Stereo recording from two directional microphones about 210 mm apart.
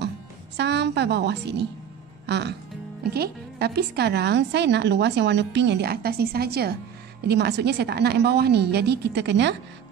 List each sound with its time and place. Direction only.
0.6 s speech: 55° right (ahead or behind)